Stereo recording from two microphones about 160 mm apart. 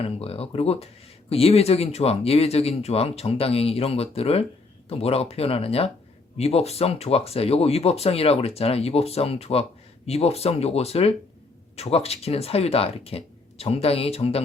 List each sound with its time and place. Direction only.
0.0 s speech: 40° left (ahead or behind)